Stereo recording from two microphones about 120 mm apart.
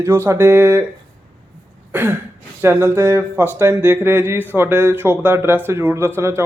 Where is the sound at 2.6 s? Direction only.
20° right (ahead or behind).